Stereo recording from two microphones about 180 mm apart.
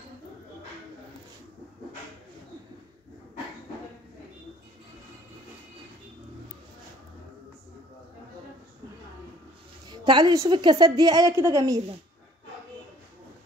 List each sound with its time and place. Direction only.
9.8 s a woman's voice: 25° right (ahead or behind)